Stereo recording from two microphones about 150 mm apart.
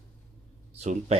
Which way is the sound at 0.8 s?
50° right (ahead or behind).